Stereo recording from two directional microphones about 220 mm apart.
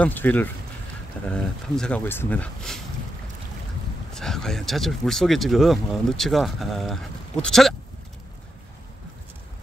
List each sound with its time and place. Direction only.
0.0 s speech: 10° left (ahead or behind)
4.1 s speech: centre (ahead or behind)